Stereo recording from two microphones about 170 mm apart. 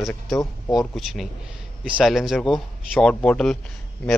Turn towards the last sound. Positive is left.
turn(degrees=5)  # may be behind; listen again after turning